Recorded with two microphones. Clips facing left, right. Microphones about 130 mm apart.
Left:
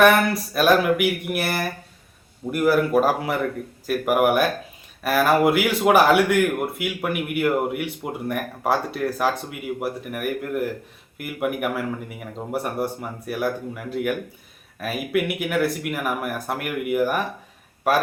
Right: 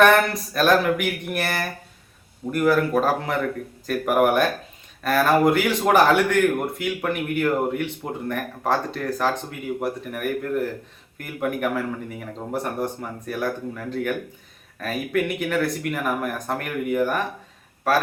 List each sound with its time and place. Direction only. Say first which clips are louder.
0.0 s speech: even; 5° left (ahead or behind)